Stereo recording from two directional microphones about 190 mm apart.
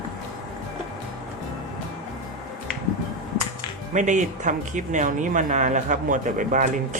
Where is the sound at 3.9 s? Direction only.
40° right (ahead or behind).